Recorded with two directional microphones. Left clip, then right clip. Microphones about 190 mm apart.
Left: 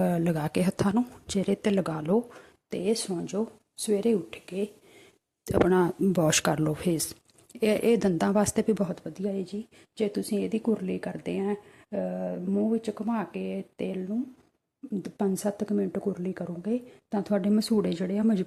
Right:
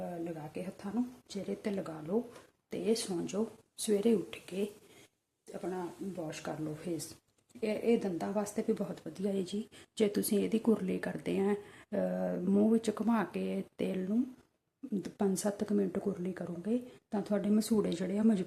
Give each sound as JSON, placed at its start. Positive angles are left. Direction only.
{"t": 0.0, "sound": "a woman's voice", "side_deg": 50}
{"t": 2.6, "sound": "speech", "side_deg": 25}
{"t": 5.5, "sound": "a woman's voice", "side_deg": 55}
{"t": 9.0, "sound": "speech", "side_deg": 15}